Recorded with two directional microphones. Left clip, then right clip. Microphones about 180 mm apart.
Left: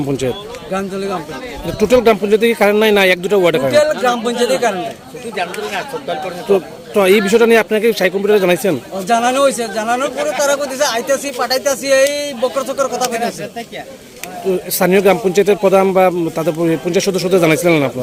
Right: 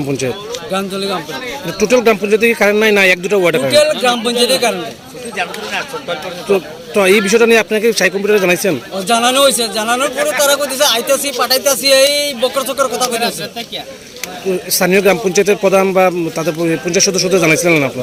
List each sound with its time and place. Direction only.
0.1 s a man's voice: 15° left (ahead or behind)
5.4 s speech: 55° left (ahead or behind)
6.5 s a man's voice: 10° left (ahead or behind)
14.5 s a man's voice: 10° left (ahead or behind)